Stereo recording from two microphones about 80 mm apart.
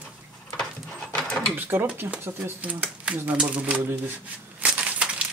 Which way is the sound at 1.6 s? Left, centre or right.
Right.